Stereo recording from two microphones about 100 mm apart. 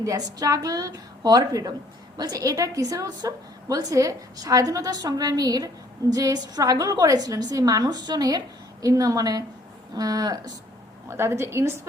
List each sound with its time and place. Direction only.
0.0 s a woman's voice: 35° right (ahead or behind)
11.1 s a woman's voice: 25° right (ahead or behind)